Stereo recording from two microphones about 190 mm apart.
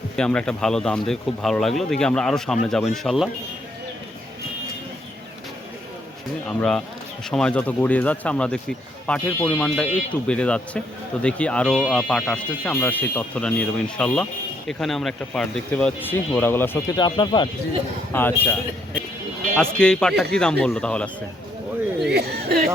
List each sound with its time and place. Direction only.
0.2 s speech: 5° left (ahead or behind)
6.5 s speech: 5° left (ahead or behind)
17.0 s speech: 25° left (ahead or behind)
18.1 s speech: 10° left (ahead or behind)
19.5 s speech: 5° left (ahead or behind)
22.1 s speech: 55° right (ahead or behind)